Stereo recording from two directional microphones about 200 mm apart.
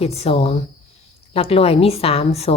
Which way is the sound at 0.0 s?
30° left (ahead or behind).